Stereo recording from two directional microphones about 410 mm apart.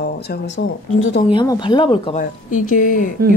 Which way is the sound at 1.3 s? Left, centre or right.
Centre.